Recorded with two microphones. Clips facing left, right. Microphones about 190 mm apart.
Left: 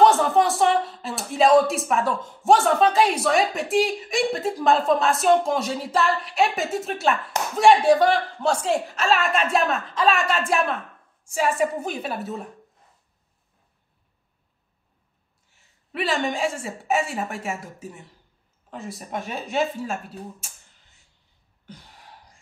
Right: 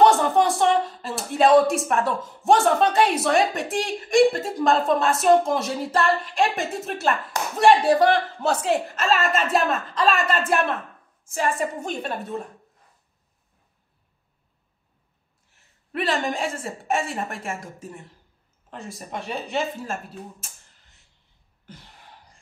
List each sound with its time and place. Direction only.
0.0 s speech: centre (ahead or behind)
15.5 s speech: centre (ahead or behind)